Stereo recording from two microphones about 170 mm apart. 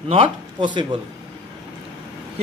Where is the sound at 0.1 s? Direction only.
30° right (ahead or behind).